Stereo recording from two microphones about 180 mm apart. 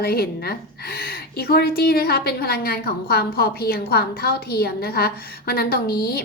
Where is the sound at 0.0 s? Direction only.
60° left (ahead or behind).